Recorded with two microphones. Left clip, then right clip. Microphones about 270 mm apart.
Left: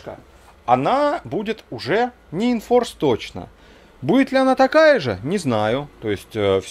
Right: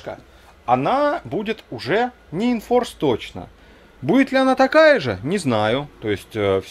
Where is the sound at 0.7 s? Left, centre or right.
Centre.